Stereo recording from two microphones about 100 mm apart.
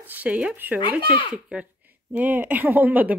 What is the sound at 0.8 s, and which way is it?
Speech, 55° left (ahead or behind).